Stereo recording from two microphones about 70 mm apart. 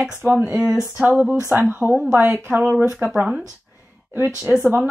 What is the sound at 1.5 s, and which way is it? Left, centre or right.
A woman's voice, right.